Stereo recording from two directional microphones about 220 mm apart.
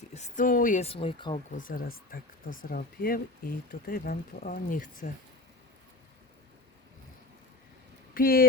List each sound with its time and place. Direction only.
0.1 s speech: 35° left (ahead or behind)
1.5 s speech: 40° left (ahead or behind)
8.1 s speech: 40° left (ahead or behind)